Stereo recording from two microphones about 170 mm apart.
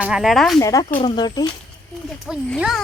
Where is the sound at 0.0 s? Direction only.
5° right (ahead or behind).